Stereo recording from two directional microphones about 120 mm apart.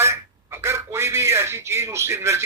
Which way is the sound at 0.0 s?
20° right (ahead or behind).